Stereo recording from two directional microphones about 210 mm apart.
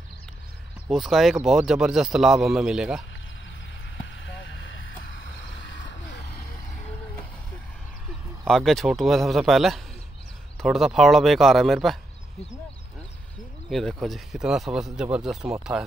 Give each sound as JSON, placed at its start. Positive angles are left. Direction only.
{"t": 0.8, "sound": "a man's voice", "side_deg": 0}
{"t": 4.2, "sound": "vehicle", "side_deg": 65}
{"t": 8.5, "sound": "a man's voice", "side_deg": 0}
{"t": 13.7, "sound": "a man's voice", "side_deg": 0}